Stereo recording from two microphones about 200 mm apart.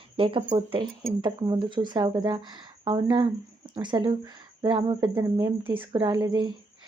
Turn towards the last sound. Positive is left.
turn(degrees=-20)  # may be behind; listen again after turning